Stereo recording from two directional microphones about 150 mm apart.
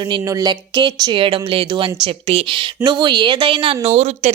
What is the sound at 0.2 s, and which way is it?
A woman's voice, 20° right (ahead or behind).